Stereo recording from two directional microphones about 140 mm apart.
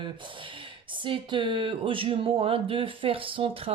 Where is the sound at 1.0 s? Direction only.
35° right (ahead or behind).